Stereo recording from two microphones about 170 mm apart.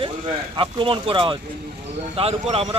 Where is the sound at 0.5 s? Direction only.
30° right (ahead or behind).